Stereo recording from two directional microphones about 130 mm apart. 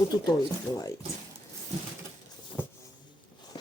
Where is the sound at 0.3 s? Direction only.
25° left (ahead or behind).